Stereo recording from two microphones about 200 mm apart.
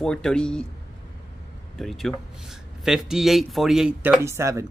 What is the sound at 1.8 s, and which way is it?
Speech, centre (ahead or behind).